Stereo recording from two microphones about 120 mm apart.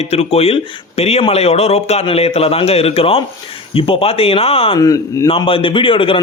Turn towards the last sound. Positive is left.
turn(degrees=45)  # may be behind; listen again after turning